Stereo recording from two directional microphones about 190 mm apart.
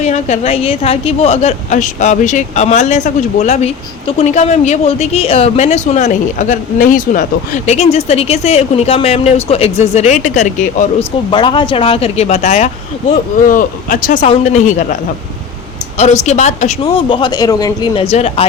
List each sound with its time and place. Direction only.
0.0 s a woman's voice: 35° left (ahead or behind)
11.3 s a woman's voice: 25° left (ahead or behind)
16.0 s a woman's voice: 35° left (ahead or behind)